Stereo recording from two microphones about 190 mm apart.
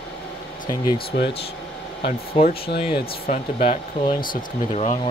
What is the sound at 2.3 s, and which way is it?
Speech, 35° left (ahead or behind).